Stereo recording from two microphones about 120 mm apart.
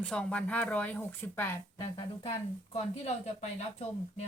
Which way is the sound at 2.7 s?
70° left (ahead or behind).